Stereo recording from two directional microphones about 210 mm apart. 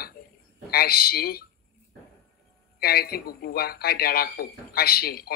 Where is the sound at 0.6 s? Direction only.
45° left (ahead or behind).